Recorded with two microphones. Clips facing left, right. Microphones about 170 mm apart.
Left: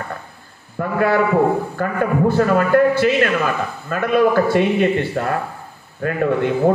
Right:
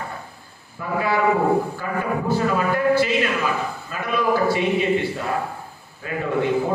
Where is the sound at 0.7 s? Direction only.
55° left (ahead or behind).